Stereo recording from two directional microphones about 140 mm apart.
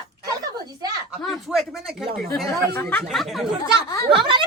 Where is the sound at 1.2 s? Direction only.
Centre (ahead or behind).